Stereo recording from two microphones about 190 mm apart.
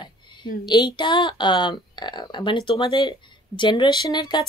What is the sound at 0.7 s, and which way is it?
Speech, 20° left (ahead or behind).